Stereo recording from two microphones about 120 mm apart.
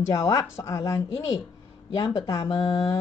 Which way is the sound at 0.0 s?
30° left (ahead or behind).